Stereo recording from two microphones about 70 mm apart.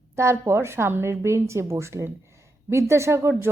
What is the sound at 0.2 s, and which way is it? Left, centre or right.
A woman's voice, right.